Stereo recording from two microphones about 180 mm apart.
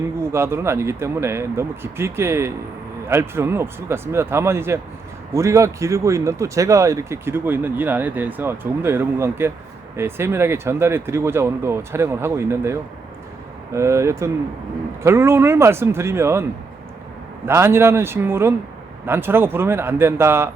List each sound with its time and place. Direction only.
0.3 s speech: 15° right (ahead or behind)
13.7 s speech: 15° right (ahead or behind)